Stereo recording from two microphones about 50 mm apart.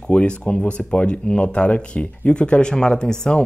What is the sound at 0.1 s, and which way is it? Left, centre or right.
Speech, left.